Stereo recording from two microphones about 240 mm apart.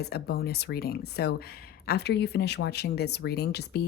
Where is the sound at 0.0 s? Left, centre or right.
Left.